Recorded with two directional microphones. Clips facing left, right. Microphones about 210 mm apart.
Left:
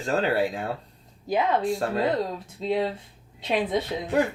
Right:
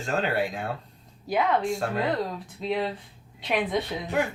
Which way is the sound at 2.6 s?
25° left (ahead or behind).